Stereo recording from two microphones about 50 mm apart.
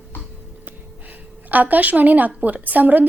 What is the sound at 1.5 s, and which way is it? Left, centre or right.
A woman's voice, right.